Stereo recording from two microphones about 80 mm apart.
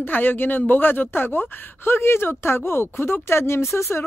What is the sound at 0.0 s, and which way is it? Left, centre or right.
Speech, left.